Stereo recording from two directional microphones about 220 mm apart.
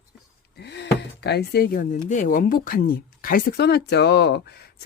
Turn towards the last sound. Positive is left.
turn(degrees=50)  # may be behind; listen again after turning